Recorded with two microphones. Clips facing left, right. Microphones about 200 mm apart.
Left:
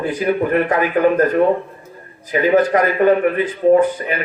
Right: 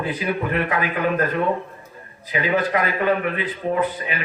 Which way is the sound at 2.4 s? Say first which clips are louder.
Left 7 dB; 45° left (ahead or behind).